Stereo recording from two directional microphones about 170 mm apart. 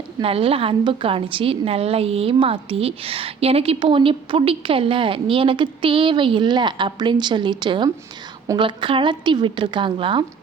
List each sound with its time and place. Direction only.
0.2 s a woman's voice: 35° right (ahead or behind)